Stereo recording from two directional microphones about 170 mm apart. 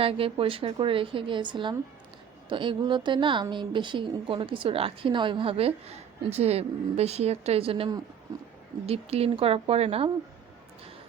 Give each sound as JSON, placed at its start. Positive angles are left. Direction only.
{"t": 0.0, "sound": "a woman's voice", "side_deg": -35}